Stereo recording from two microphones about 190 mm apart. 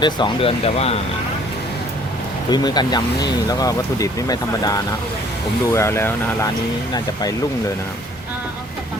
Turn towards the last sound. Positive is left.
turn(degrees=20)  # may be behind; listen again after turning